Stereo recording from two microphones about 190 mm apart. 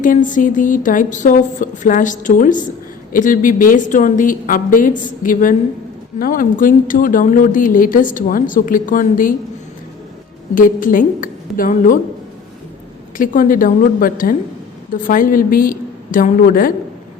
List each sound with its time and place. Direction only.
0.0 s speech: 45° left (ahead or behind)
10.5 s speech: 45° left (ahead or behind)
13.1 s speech: 45° left (ahead or behind)